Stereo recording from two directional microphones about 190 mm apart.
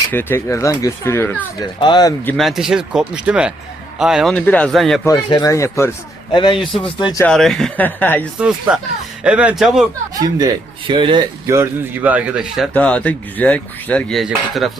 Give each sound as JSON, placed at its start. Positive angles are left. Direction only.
{"t": 0.1, "sound": "speech", "side_deg": 10}
{"t": 1.8, "sound": "speech", "side_deg": 20}
{"t": 2.2, "sound": "speech", "side_deg": 0}
{"t": 5.0, "sound": "speech", "side_deg": 20}
{"t": 7.3, "sound": "speech", "side_deg": 0}
{"t": 8.4, "sound": "speech", "side_deg": -5}
{"t": 10.2, "sound": "speech", "side_deg": -20}